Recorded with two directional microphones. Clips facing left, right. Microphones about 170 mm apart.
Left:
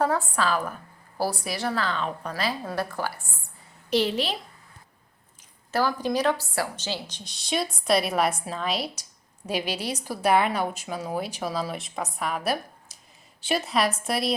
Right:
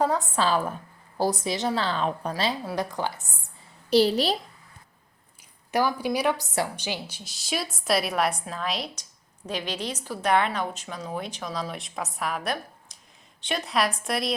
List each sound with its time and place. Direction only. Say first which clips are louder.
0.0 s a woman's voice: even; 15° right (ahead or behind)
0.3 s a woman's voice: right 2 dB; 30° right (ahead or behind)
2.3 s a woman's voice: right 1 dB; 20° right (ahead or behind)
3.8 s a child's voice: right 4 dB; 35° right (ahead or behind)
5.7 s a woman's voice: even; 10° right (ahead or behind)